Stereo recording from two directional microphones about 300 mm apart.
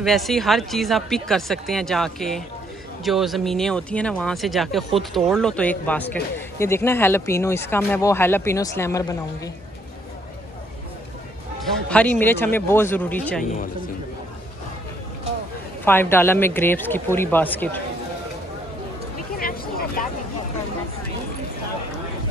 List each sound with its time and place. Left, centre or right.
0.0 s speech: centre
11.9 s speech: centre
15.8 s speech: centre
19.3 s vehicle: left